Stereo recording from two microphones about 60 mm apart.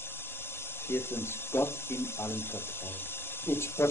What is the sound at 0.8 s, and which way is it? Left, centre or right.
Speech, left.